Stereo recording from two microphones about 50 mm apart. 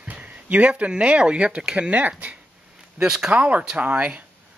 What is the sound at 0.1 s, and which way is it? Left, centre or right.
Speech, right.